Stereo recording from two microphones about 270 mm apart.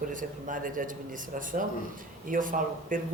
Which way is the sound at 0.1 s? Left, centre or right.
Right.